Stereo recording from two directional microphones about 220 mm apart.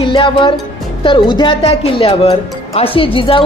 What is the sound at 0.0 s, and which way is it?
Speech, 25° left (ahead or behind).